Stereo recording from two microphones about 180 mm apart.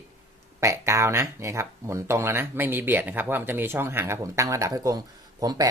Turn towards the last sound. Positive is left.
turn(degrees=-20)  # may be behind; listen again after turning